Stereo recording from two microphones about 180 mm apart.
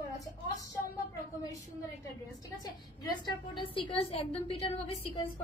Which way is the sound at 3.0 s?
25° left (ahead or behind).